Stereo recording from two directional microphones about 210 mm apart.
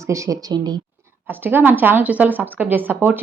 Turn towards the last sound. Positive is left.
turn(degrees=-10)  # may be behind; listen again after turning